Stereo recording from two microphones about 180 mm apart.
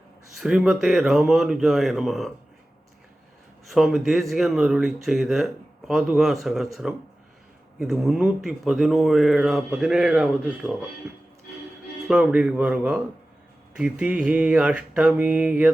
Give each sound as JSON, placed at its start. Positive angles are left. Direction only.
{"t": 0.3, "sound": "speech", "side_deg": -5}
{"t": 3.7, "sound": "speech", "side_deg": 0}
{"t": 12.0, "sound": "speech", "side_deg": -5}
{"t": 13.7, "sound": "mantra", "side_deg": -5}